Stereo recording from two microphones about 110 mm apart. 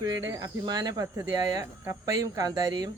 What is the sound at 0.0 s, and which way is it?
Speech, 40° right (ahead or behind).